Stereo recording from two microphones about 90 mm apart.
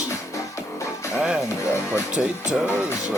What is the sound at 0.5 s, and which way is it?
Music, 35° left (ahead or behind).